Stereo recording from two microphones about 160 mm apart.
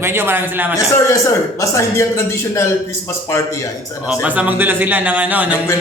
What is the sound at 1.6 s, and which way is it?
A man's voice, 20° left (ahead or behind).